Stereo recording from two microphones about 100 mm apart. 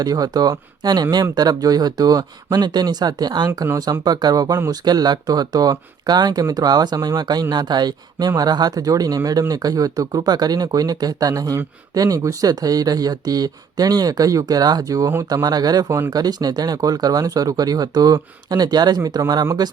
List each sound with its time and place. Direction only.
0.0 s speech: 40° right (ahead or behind)